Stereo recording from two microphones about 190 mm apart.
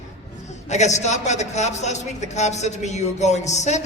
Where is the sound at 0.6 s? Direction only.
35° left (ahead or behind).